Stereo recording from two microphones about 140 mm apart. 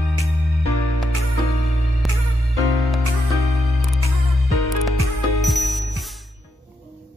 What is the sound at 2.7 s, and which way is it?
Music, centre (ahead or behind).